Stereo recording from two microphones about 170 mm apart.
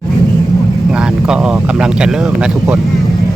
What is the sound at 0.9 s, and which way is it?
Speech, 5° right (ahead or behind).